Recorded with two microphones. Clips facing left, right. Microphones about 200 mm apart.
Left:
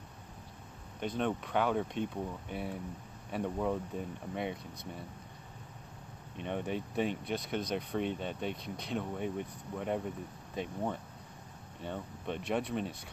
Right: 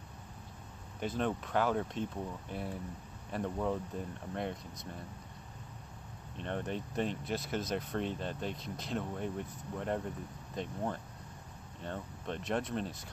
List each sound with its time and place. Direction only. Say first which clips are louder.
1.0 s speech: left 1 dB; centre (ahead or behind)
6.3 s speech: left 2 dB; 5° left (ahead or behind)